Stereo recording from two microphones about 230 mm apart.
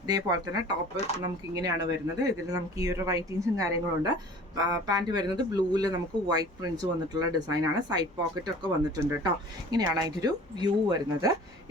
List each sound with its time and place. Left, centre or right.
0.1 s a man's voice: centre